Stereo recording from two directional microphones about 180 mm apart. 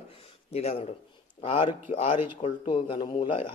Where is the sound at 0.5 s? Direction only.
35° left (ahead or behind).